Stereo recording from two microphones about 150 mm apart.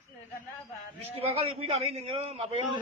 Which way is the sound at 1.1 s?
40° right (ahead or behind).